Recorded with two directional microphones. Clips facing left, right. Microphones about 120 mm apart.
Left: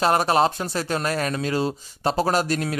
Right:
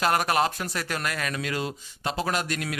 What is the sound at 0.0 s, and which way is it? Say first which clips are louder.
Speech: left 4 dB; 30° left (ahead or behind).